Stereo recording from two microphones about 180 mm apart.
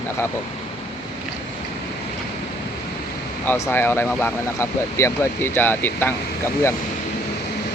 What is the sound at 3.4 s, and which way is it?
Speech, 15° left (ahead or behind).